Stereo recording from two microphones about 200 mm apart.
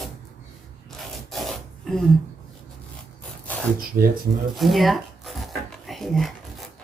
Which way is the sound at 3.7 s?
45° right (ahead or behind).